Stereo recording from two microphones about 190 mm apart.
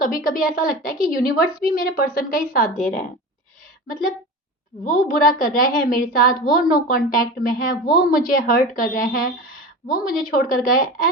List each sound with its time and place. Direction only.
0.0 s a woman's voice: 45° left (ahead or behind)
4.9 s a woman's voice: 45° left (ahead or behind)